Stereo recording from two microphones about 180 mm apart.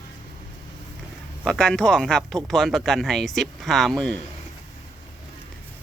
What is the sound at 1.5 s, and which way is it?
Speech, 5° left (ahead or behind).